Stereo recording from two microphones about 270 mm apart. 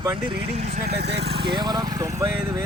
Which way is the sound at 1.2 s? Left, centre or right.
Centre.